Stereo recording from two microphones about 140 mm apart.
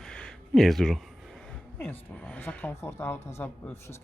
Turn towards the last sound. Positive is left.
turn(degrees=20)  # may be behind; listen again after turning